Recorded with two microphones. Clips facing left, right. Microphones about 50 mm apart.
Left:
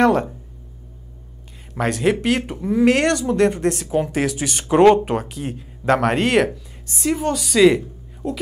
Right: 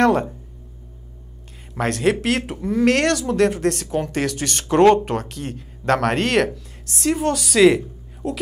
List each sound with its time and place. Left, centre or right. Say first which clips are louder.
0.0 s speech: left 1 dB; centre
1.8 s speech: even; centre